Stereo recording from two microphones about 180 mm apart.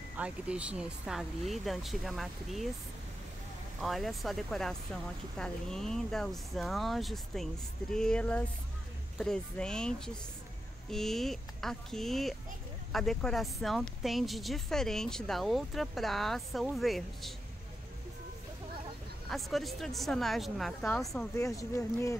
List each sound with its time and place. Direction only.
0.2 s speech: 5° right (ahead or behind)
3.8 s speech: centre (ahead or behind)
19.2 s speech: centre (ahead or behind)
21.4 s speech: 15° left (ahead or behind)